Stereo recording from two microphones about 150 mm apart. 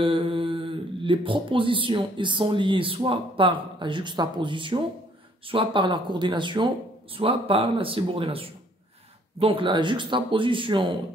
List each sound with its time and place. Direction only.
0.0 s speech: 35° right (ahead or behind)